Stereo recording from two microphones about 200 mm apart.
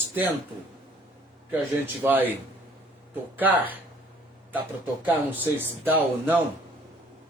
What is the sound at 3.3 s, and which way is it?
Speech, 10° right (ahead or behind).